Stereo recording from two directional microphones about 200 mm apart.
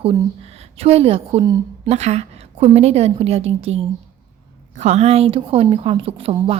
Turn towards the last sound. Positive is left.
turn(degrees=-30)  # may be behind; listen again after turning